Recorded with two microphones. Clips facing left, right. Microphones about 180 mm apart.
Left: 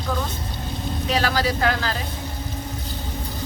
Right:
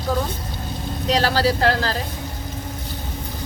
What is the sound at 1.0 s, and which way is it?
Speech, 35° right (ahead or behind).